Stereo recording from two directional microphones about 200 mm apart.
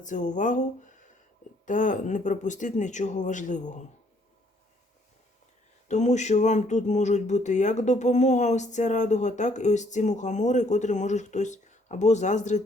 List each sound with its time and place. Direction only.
0.0 s speech: 40° left (ahead or behind)
5.9 s speech: 35° left (ahead or behind)